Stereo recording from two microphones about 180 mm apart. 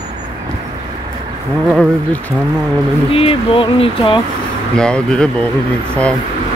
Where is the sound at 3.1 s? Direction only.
30° left (ahead or behind).